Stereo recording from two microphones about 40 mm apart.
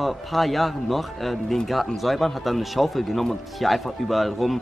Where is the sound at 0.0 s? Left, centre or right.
Centre.